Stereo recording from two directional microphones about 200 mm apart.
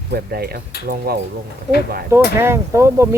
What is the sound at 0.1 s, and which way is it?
Speech, 50° right (ahead or behind).